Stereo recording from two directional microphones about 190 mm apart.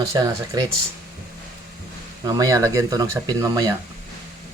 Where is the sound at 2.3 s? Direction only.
20° right (ahead or behind).